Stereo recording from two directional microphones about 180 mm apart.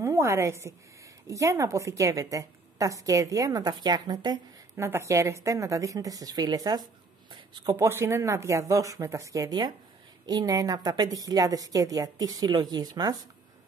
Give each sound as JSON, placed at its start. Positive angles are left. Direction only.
{"t": 0.0, "sound": "a woman's voice", "side_deg": -15}